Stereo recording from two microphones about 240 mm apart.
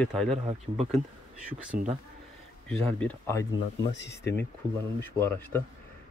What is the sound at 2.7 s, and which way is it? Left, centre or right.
Speech, centre.